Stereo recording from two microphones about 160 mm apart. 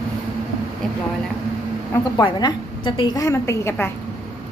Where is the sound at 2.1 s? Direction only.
25° left (ahead or behind).